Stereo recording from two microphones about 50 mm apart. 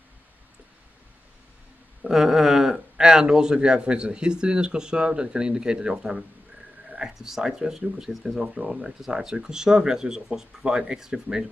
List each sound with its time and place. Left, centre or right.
2.0 s speech: centre